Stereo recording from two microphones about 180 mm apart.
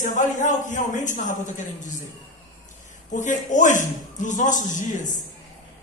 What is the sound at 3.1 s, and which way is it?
A man's voice, 45° left (ahead or behind).